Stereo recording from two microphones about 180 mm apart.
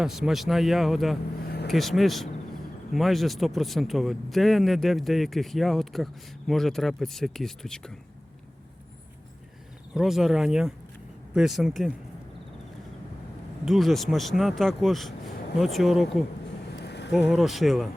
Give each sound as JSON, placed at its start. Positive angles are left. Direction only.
{"t": 0.0, "sound": "a man's voice", "side_deg": 0}
{"t": 9.9, "sound": "a man's voice", "side_deg": 0}
{"t": 13.7, "sound": "a man's voice", "side_deg": 0}
{"t": 16.8, "sound": "a sound", "side_deg": 70}
{"t": 17.2, "sound": "a man's voice", "side_deg": 0}